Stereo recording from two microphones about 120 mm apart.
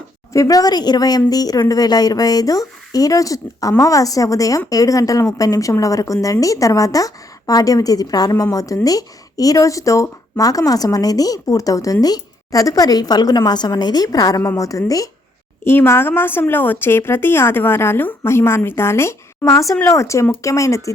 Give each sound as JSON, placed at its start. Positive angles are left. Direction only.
{"t": 0.3, "sound": "a woman's voice", "side_deg": 30}
{"t": 15.6, "sound": "a woman's voice", "side_deg": 20}